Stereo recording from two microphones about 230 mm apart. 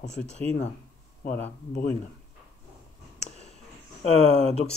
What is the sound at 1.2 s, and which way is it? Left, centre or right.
Speech, left.